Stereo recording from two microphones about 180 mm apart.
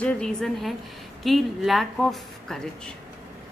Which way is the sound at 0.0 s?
5° left (ahead or behind).